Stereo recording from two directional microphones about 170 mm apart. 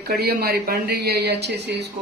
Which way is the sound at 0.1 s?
65° right (ahead or behind).